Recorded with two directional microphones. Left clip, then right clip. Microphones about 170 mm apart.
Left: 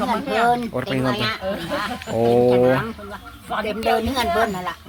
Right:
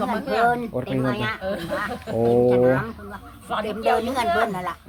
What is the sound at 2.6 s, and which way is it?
Speech, 35° left (ahead or behind).